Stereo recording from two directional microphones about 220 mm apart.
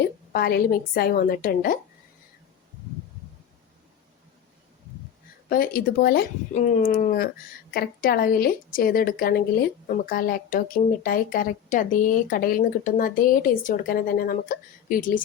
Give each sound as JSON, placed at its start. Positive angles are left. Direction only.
{"t": 0.3, "sound": "a woman's voice", "side_deg": 45}
{"t": 5.5, "sound": "speech", "side_deg": 40}